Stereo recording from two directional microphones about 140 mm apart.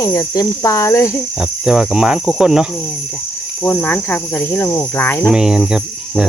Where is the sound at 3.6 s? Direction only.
10° left (ahead or behind).